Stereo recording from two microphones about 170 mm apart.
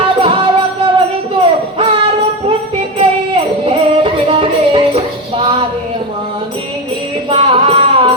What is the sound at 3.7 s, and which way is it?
Music, 30° right (ahead or behind).